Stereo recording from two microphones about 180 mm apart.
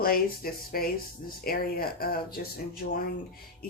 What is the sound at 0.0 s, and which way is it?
Speech, 55° left (ahead or behind).